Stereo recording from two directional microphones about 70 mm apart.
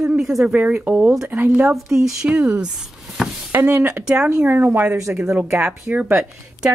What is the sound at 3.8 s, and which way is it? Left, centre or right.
Speech, right.